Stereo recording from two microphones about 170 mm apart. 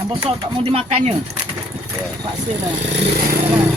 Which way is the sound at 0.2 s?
35° right (ahead or behind).